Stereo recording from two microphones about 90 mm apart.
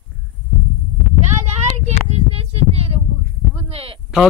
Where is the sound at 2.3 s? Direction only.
90° right.